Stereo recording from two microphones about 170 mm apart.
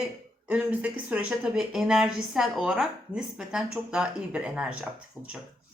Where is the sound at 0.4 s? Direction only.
10° right (ahead or behind).